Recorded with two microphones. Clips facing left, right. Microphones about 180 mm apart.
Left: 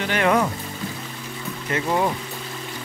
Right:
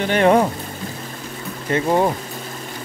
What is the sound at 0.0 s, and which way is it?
Speech, 30° right (ahead or behind).